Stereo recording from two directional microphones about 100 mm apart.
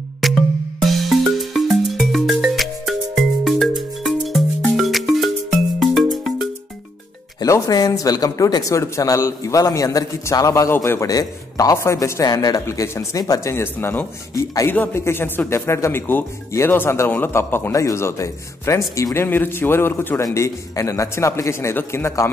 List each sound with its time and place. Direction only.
0.2 s music: centre (ahead or behind)
7.3 s speech: 35° left (ahead or behind)
14.3 s speech: 35° left (ahead or behind)
14.7 s speech: 25° left (ahead or behind)
19.2 s speech: 20° left (ahead or behind)
20.3 s speech: 30° left (ahead or behind)